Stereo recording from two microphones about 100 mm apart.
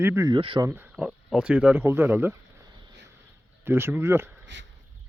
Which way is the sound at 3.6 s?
25° right (ahead or behind).